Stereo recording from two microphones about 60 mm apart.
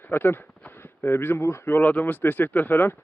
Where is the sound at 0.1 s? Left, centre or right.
Left.